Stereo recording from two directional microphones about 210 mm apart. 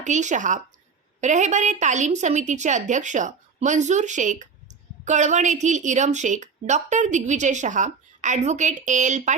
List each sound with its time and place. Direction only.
0.0 s a woman's voice: 35° right (ahead or behind)